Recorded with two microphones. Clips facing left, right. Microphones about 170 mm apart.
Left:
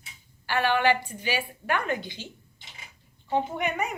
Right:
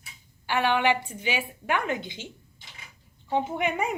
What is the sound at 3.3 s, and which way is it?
Speech, 20° right (ahead or behind).